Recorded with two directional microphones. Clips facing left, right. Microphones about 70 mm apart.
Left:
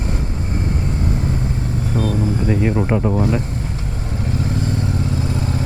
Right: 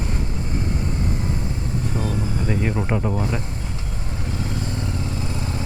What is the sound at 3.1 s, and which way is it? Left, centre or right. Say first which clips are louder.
Speech: left 6 dB; left.